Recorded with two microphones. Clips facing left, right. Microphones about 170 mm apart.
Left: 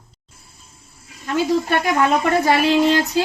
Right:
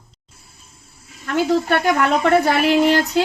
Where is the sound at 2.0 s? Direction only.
65° right (ahead or behind).